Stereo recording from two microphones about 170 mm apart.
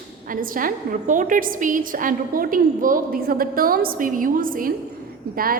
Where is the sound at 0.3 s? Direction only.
55° right (ahead or behind).